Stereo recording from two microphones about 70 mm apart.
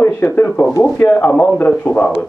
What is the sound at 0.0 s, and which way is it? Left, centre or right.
Speech, left.